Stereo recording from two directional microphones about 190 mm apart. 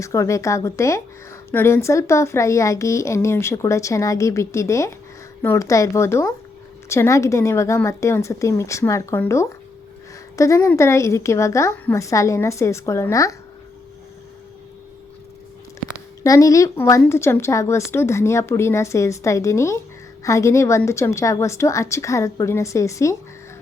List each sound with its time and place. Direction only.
0.0 s a woman's voice: 15° left (ahead or behind)
16.2 s a woman's voice: 15° left (ahead or behind)